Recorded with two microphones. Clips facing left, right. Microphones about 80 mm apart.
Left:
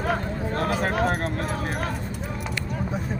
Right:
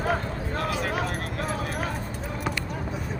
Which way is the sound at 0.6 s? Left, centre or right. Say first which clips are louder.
Left 4 dB; left.